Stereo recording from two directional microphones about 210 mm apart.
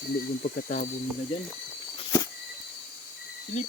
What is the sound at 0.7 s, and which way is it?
Speech, 35° left (ahead or behind).